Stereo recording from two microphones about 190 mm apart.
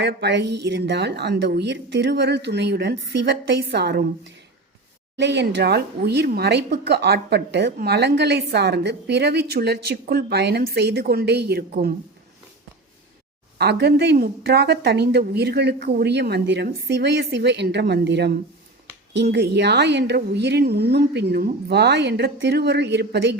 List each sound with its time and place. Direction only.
0.0 s speech: 65° right (ahead or behind)
13.6 s speech: 60° right (ahead or behind)